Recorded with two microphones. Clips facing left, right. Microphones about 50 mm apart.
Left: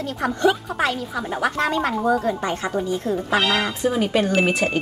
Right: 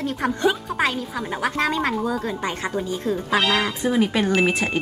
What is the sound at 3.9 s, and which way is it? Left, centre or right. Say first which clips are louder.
Speech: right 1 dB; right.